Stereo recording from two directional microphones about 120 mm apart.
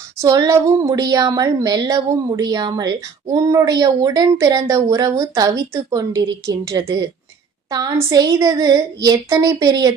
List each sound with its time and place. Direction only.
0.2 s a woman's voice: 30° right (ahead or behind)
8.1 s a woman's voice: 30° right (ahead or behind)